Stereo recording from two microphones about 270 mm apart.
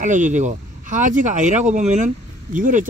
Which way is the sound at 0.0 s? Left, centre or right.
Right.